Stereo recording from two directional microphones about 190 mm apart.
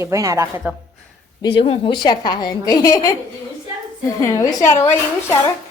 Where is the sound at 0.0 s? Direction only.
15° right (ahead or behind).